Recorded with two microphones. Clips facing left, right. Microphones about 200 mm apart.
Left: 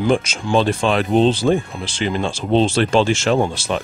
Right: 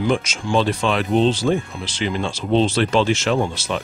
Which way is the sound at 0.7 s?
35° left (ahead or behind).